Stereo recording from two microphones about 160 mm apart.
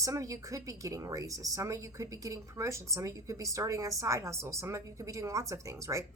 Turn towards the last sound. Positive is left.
turn(degrees=-20)  # may be behind; listen again after turning